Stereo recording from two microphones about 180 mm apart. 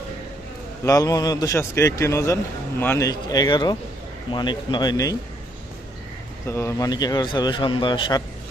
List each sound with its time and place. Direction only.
0.9 s a man's voice: 20° left (ahead or behind)
6.5 s a man's voice: 15° left (ahead or behind)